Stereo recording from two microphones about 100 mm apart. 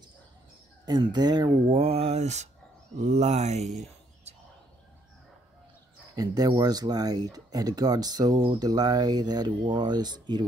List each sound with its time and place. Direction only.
0.8 s speech: 45° right (ahead or behind)
1.7 s mantra: 80° right
3.1 s speech: 90° right
6.1 s speech: 40° right (ahead or behind)